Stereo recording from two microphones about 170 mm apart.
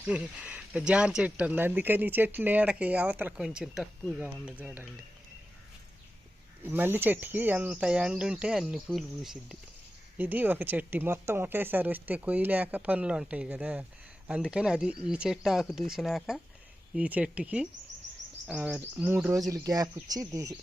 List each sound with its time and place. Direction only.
0.0 s speech: 5° right (ahead or behind)
6.7 s speech: 10° right (ahead or behind)